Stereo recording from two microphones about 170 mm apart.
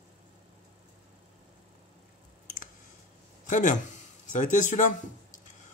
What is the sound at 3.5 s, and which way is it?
Speech, 45° left (ahead or behind).